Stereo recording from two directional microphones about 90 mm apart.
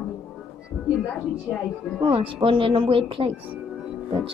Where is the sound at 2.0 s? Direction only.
75° right (ahead or behind).